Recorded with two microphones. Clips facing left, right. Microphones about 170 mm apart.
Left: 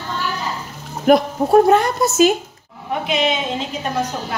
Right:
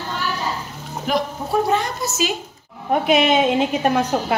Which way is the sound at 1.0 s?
55° left (ahead or behind).